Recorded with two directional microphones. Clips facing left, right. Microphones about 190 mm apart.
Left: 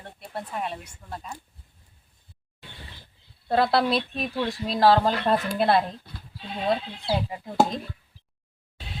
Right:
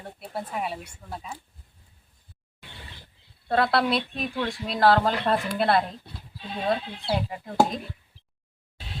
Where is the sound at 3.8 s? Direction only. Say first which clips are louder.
Left 1 dB; centre (ahead or behind).